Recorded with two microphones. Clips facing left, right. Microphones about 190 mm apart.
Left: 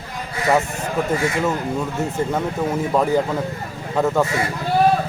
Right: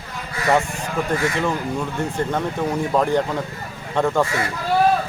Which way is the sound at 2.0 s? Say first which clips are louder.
Even; 5° left (ahead or behind).